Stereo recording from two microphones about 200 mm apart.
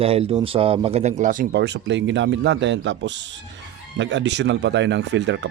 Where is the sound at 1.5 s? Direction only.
60° right (ahead or behind).